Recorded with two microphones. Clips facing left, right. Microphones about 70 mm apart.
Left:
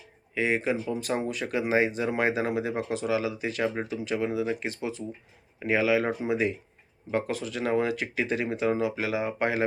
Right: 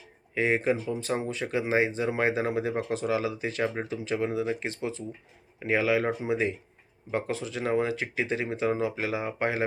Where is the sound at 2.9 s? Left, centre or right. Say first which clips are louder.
Even; right.